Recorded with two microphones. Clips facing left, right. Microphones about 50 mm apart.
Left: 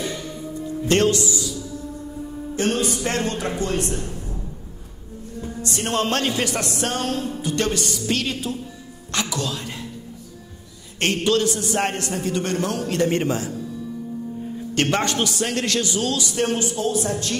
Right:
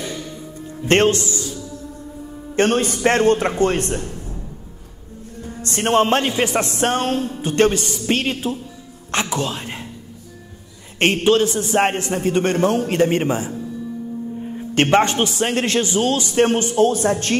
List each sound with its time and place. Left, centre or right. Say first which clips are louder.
0.8 s a man's voice: right 3 dB; right
5.6 s music: right 6 dB; right
5.9 s a man's voice: right 5 dB; right
11.0 s a man's voice: right 5 dB; right